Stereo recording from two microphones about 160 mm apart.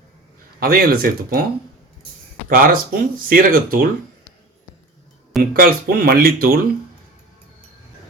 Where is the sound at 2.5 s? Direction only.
60° right (ahead or behind).